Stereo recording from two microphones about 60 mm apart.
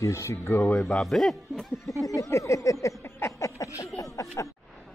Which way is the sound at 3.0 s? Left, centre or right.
Left.